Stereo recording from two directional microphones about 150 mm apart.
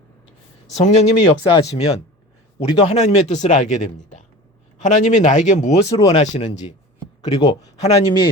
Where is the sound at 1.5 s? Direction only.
40° left (ahead or behind).